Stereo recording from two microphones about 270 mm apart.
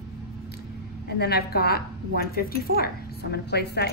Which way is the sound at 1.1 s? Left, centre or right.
Left.